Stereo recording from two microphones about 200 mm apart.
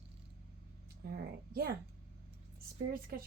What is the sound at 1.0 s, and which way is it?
Speech, 50° right (ahead or behind).